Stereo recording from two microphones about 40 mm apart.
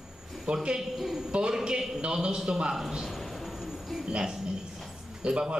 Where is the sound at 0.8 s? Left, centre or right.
Centre.